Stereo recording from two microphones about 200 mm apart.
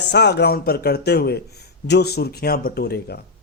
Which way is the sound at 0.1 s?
55° left (ahead or behind).